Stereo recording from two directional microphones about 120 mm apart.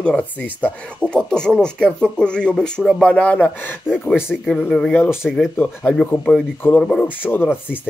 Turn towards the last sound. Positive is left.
turn(degrees=15)  # may be behind; listen again after turning